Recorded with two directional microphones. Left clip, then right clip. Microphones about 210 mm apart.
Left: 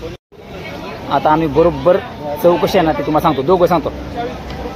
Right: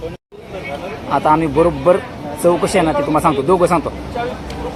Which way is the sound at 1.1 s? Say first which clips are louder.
Left 1 dB; 5° left (ahead or behind).